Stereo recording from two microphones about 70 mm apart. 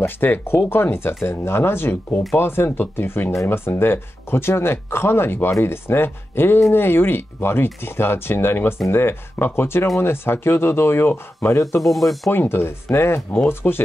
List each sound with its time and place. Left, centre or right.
0.0 s speech: left
11.8 s speech: centre
12.3 s speech: left